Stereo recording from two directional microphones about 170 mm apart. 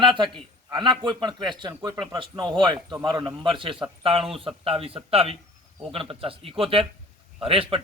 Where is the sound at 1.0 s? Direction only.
25° right (ahead or behind).